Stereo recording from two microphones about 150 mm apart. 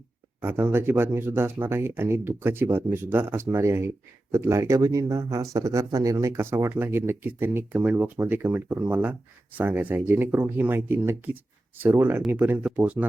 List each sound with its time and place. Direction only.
0.4 s speech: 15° right (ahead or behind)